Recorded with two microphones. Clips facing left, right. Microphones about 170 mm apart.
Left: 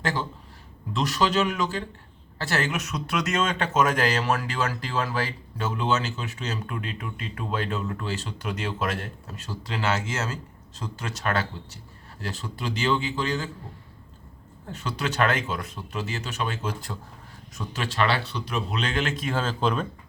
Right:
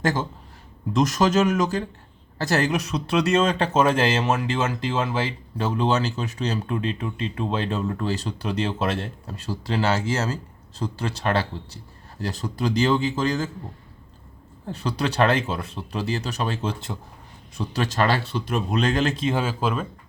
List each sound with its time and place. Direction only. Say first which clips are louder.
0.0 s speech: right 4 dB; 45° right (ahead or behind)
14.7 s speech: right 4 dB; 35° right (ahead or behind)
17.6 s speech: right 3 dB; 40° right (ahead or behind)
19.2 s speech: right 2 dB; 15° right (ahead or behind)